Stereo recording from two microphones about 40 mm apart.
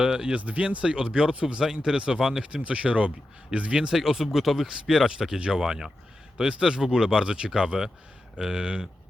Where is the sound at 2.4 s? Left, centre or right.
Right.